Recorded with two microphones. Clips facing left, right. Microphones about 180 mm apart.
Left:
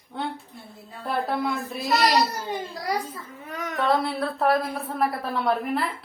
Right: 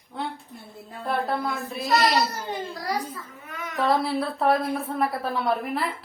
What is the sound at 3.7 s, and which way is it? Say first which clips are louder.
A woman's voice: right 1 dB; centre (ahead or behind).